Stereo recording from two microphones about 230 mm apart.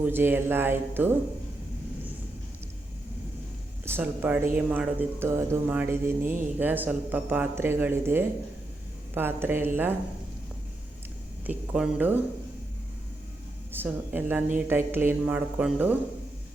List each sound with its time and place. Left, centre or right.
0.0 s speech: centre
3.8 s speech: centre
11.4 s speech: centre
13.7 s speech: centre